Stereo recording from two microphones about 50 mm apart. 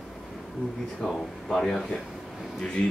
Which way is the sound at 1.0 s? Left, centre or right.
Centre.